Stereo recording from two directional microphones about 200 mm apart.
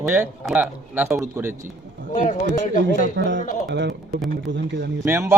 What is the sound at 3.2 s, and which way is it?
Speech, 65° right (ahead or behind).